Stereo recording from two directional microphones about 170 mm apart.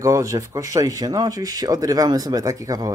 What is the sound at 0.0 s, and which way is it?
Speech, 20° right (ahead or behind).